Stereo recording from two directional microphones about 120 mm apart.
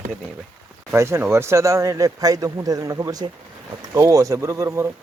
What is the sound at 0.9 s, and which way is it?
Speech, 20° right (ahead or behind).